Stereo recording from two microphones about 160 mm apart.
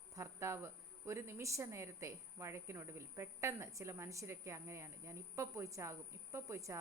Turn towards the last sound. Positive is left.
turn(degrees=-20)  # may be behind; listen again after turning